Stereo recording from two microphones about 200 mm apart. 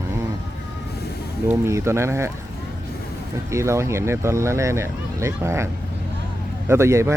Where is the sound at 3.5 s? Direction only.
15° right (ahead or behind).